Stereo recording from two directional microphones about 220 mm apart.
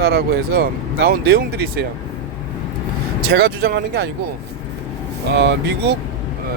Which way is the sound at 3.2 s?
45° right (ahead or behind).